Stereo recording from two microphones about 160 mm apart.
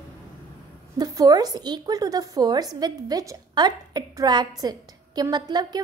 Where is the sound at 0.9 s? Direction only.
25° right (ahead or behind).